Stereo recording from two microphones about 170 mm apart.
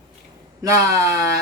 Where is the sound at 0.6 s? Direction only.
15° right (ahead or behind).